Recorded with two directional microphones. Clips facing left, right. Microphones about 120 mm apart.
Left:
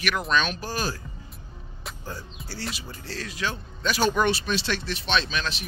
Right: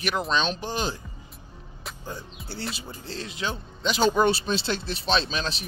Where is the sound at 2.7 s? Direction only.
25° right (ahead or behind).